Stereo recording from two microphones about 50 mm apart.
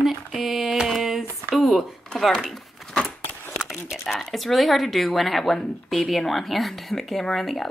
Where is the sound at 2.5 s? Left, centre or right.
Centre.